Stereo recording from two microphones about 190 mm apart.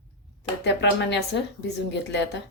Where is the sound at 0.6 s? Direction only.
65° left (ahead or behind).